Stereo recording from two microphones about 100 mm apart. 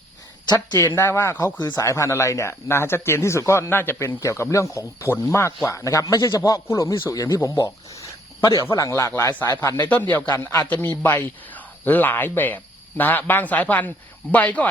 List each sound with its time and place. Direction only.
0.9 s speech: 25° left (ahead or behind)
1.6 s a man's voice: 35° left (ahead or behind)
9.8 s a man's voice: 20° left (ahead or behind)